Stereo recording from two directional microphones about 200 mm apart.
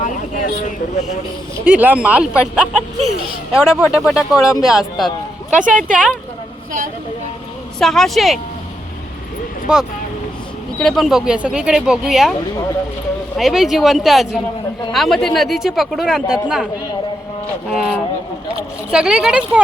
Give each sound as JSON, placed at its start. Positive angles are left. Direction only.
{"t": 0.0, "sound": "a sound", "side_deg": 40}
{"t": 1.6, "sound": "a man's voice", "side_deg": -5}
{"t": 7.8, "sound": "speech", "side_deg": 0}
{"t": 9.7, "sound": "speech", "side_deg": -5}
{"t": 13.3, "sound": "speech", "side_deg": 0}
{"t": 17.7, "sound": "speech", "side_deg": 0}